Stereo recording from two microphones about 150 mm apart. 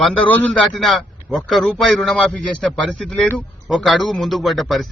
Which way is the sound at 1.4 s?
Centre (ahead or behind).